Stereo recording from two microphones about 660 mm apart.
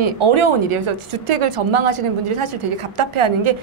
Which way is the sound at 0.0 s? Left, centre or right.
Right.